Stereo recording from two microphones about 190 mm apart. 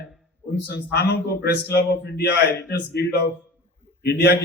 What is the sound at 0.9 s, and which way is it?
A man's voice, 60° left (ahead or behind).